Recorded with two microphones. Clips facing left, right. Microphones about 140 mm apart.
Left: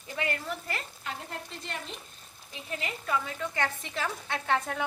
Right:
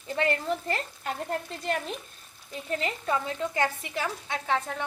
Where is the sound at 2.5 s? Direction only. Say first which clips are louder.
Right 6 dB; 35° right (ahead or behind).